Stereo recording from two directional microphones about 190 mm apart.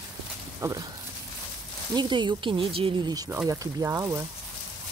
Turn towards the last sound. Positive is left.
turn(degrees=-15)  # may be behind; listen again after turning